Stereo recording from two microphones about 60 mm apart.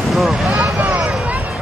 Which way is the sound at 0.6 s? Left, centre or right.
Right.